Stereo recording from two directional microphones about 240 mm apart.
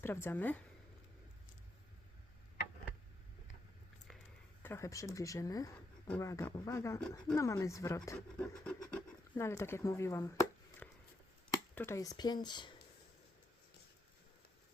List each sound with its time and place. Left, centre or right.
0.0 s speech: centre
4.6 s speech: centre